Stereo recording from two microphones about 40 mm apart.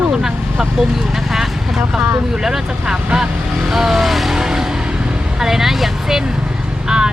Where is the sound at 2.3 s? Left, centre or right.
Centre.